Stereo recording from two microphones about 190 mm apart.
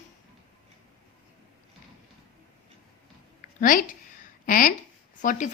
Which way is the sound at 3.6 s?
45° left (ahead or behind).